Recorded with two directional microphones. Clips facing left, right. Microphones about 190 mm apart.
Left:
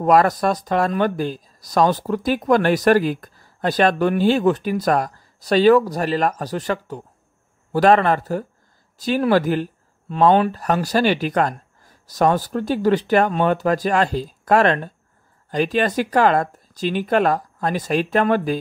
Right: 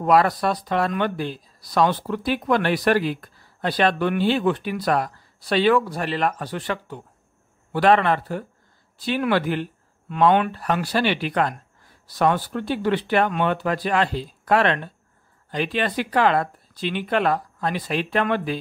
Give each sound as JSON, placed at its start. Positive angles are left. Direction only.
{"t": 0.0, "sound": "speech", "side_deg": 45}